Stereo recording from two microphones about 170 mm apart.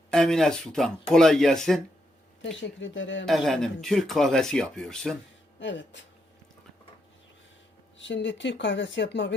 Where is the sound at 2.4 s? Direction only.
90° left.